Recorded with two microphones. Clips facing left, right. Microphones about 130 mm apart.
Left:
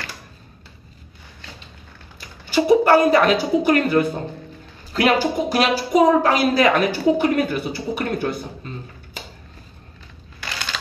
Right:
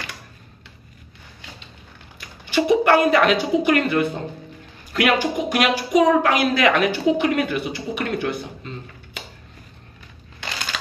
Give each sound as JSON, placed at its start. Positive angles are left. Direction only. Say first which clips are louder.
{"t": 2.1, "sound": "a woman's voice", "louder": "left 1 dB", "side_deg": 35}